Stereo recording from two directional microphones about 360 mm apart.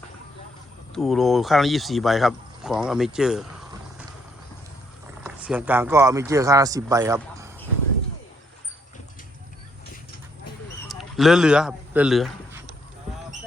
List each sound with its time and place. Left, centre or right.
0.9 s speech: centre
5.2 s speech: centre
10.8 s speech: centre